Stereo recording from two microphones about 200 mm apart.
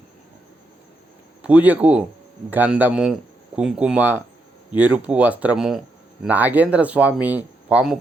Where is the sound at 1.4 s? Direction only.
5° right (ahead or behind).